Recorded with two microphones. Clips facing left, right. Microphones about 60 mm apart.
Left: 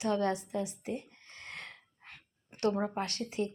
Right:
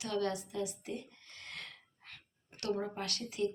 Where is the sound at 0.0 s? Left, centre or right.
Left.